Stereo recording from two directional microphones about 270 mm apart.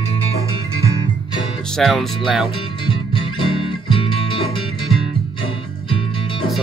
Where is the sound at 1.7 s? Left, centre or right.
Centre.